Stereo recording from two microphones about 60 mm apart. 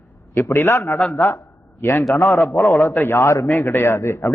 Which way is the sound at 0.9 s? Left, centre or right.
Centre.